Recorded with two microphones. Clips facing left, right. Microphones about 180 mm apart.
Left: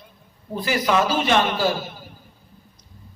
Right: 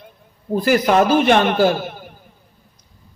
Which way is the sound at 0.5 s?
50° right (ahead or behind).